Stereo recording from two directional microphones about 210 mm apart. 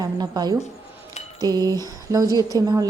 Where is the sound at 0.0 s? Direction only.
20° right (ahead or behind).